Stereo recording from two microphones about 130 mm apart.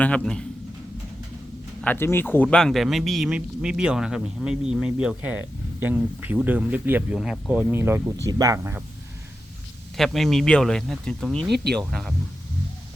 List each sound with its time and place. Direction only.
0.0 s speech: 10° left (ahead or behind)
1.8 s speech: 15° left (ahead or behind); by 8.8 s 20° right (ahead or behind)
10.0 s speech: centre (ahead or behind)